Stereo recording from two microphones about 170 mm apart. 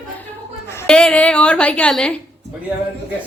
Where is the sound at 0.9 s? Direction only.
5° left (ahead or behind).